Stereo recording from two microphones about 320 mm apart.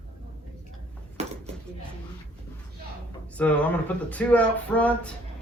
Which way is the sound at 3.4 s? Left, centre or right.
Centre.